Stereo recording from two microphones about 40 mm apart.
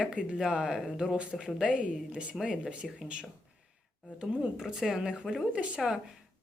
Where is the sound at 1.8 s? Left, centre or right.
Right.